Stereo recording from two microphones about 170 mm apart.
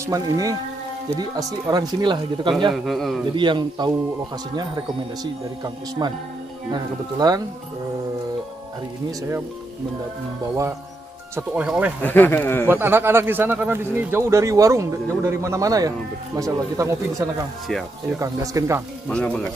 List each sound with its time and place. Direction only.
0.0 s speech: 20° right (ahead or behind)
2.7 s speech: centre (ahead or behind)
3.3 s speech: 25° right (ahead or behind)
5.2 s speech: 25° right (ahead or behind)
11.3 s speech: 10° right (ahead or behind)
12.0 s speech: 10° left (ahead or behind)
12.6 s speech: 10° right (ahead or behind)
19.0 s speech: 5° left (ahead or behind)